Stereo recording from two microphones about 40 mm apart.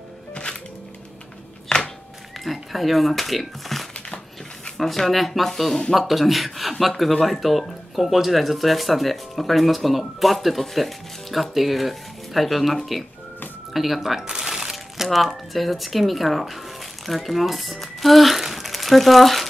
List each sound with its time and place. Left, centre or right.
0.3 s music: left
1.7 s a sound: left
2.4 s speech: centre
14.4 s music: centre
15.0 s speech: centre